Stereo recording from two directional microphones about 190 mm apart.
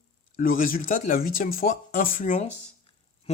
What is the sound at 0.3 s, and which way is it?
Speech, 50° left (ahead or behind).